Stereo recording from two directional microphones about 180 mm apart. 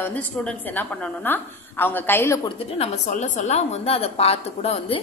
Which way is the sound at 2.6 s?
35° left (ahead or behind).